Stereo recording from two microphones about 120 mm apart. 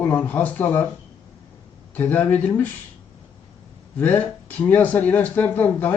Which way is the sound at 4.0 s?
15° left (ahead or behind).